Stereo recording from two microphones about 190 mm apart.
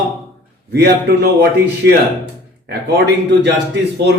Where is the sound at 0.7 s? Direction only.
60° right (ahead or behind).